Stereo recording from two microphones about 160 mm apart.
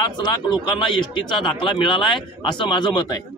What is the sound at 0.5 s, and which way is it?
Speech, 30° left (ahead or behind).